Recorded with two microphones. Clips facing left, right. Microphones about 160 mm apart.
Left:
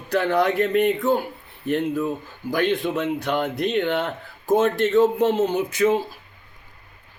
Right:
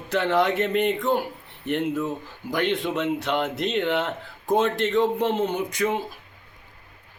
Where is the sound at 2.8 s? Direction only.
5° left (ahead or behind).